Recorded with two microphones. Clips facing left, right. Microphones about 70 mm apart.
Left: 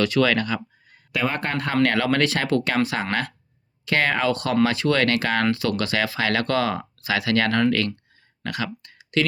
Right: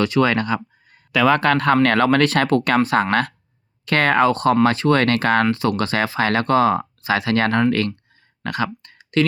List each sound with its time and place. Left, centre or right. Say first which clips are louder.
0.0 s speech: right 2 dB; right
1.2 s speech: right 9 dB; right
5.5 s speech: right 3 dB; right
8.4 s a sound: right 5 dB; right